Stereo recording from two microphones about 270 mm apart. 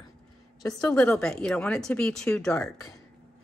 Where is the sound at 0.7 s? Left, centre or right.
Centre.